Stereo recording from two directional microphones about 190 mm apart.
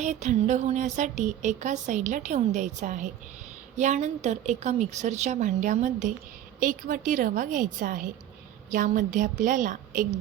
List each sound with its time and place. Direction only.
0.0 s music: 40° right (ahead or behind)
6.6 s a woman's voice: 45° right (ahead or behind)